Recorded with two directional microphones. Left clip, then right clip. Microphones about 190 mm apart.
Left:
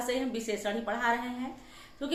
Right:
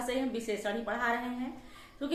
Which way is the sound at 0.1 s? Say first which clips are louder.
Left 1 dB; 10° left (ahead or behind).